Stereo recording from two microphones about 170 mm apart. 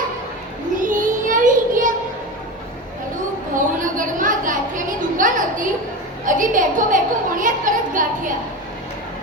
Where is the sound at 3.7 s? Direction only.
50° right (ahead or behind).